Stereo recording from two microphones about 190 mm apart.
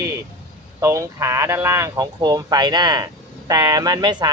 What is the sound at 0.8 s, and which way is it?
Speech, 15° right (ahead or behind).